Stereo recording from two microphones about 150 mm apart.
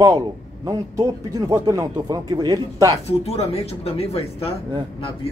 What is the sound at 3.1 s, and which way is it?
Speech, 45° left (ahead or behind).